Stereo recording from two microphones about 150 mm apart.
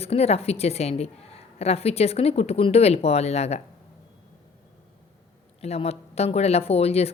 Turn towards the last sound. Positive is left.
turn(degrees=45)  # may be behind; listen again after turning